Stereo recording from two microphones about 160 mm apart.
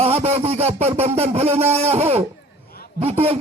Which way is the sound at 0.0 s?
40° right (ahead or behind).